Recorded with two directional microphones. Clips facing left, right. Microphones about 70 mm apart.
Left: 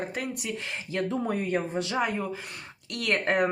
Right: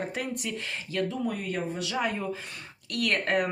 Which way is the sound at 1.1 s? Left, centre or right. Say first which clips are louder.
Left 3 dB; left.